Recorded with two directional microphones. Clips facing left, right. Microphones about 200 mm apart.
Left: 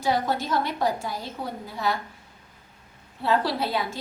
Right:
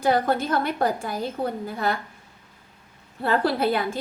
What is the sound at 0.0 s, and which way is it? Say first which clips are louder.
A woman's voice: right 4 dB; 55° right (ahead or behind).